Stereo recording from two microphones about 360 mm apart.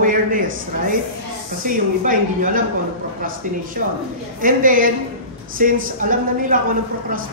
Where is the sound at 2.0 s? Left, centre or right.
Right.